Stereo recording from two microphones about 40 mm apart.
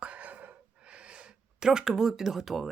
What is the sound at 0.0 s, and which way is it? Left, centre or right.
Gasp, right.